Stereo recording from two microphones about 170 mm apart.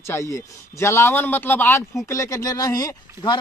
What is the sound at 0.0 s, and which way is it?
Speech, 15° left (ahead or behind).